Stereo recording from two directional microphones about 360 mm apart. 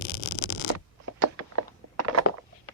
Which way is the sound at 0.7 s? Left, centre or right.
Right.